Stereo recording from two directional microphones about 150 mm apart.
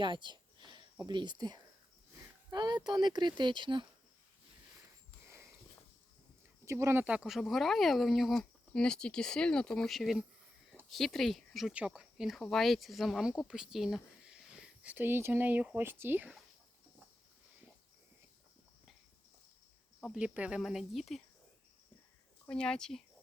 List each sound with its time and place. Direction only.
0.0 s a sound: 30° right (ahead or behind)
1.0 s speech: 30° right (ahead or behind)
6.7 s speech: 20° right (ahead or behind)
20.1 s speech: 10° right (ahead or behind)
22.4 s speech: 5° left (ahead or behind)